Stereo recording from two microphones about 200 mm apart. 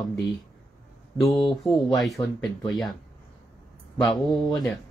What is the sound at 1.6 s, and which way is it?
Speech, centre (ahead or behind).